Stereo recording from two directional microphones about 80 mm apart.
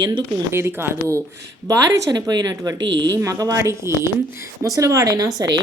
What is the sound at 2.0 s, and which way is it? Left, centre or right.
A woman's voice, right.